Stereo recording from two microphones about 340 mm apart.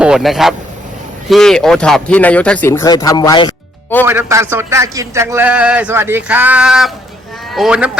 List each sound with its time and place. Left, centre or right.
0.0 s speech: centre
4.0 s a man's voice: centre